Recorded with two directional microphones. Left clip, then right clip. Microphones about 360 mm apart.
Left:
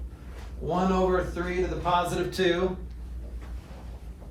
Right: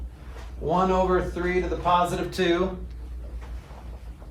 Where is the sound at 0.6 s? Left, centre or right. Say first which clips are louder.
Right 3 dB; right.